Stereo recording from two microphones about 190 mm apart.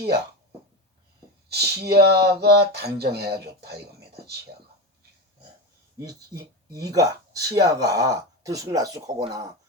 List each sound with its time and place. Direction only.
1.5 s speech: 60° right (ahead or behind)
6.3 s speech: 55° right (ahead or behind)
6.7 s speech: 20° right (ahead or behind)